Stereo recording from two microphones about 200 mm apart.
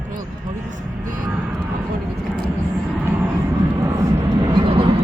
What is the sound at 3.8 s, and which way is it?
Vehicle, 15° right (ahead or behind).